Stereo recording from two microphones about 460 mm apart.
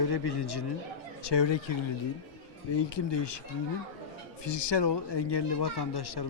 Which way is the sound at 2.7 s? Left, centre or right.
Left.